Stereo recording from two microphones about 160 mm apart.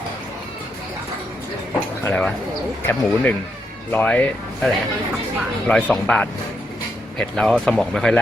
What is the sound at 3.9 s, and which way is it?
Speech, 10° left (ahead or behind).